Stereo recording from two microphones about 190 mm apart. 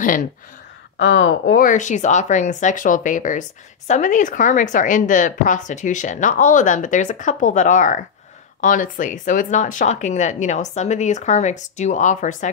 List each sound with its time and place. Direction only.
0.0 s speech: 45° left (ahead or behind)
0.9 s speech: 70° left (ahead or behind)
1.5 s speech: 45° left (ahead or behind)